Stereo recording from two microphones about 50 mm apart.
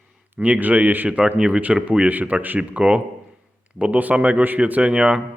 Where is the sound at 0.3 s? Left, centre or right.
Right.